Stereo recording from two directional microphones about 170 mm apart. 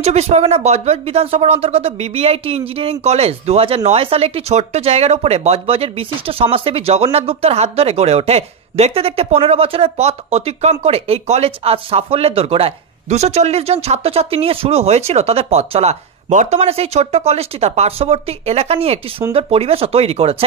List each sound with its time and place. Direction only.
0.0 s speech: 40° right (ahead or behind)